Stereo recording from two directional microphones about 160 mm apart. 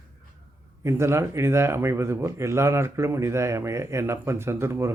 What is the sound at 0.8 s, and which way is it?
Speech, 15° right (ahead or behind).